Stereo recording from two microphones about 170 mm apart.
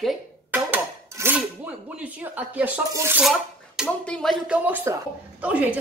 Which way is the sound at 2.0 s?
10° right (ahead or behind).